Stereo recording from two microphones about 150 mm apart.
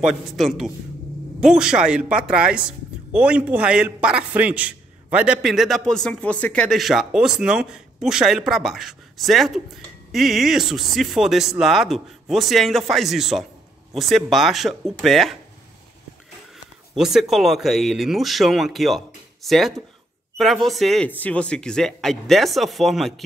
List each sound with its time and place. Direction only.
0.0 s a man's voice: centre (ahead or behind)
16.9 s a man's voice: 5° right (ahead or behind)